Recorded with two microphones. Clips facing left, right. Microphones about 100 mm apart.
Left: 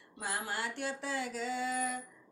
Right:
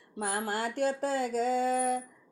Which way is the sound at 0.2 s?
45° right (ahead or behind).